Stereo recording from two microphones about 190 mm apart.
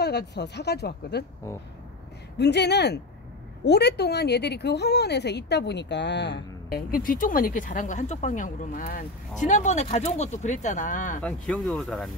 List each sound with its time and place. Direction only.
0.0 s speech: 60° left (ahead or behind)
2.3 s speech: 60° left (ahead or behind)
6.9 s speech: 45° left (ahead or behind)
11.2 s speech: 5° left (ahead or behind)